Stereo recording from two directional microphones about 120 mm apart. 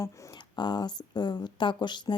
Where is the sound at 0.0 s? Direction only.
25° left (ahead or behind).